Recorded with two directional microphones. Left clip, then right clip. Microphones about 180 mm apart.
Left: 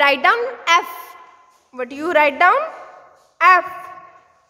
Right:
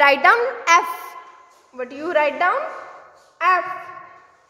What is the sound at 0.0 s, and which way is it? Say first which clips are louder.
Speech: right 1 dB; 15° left (ahead or behind).